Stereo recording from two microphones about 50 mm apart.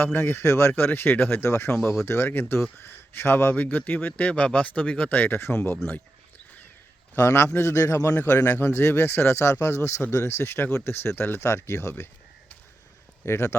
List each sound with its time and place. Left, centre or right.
0.0 s speech: left
0.7 s speech: left
7.2 s a man's voice: left
8.4 s speech: left
11.4 s speech: left
13.2 s speech: left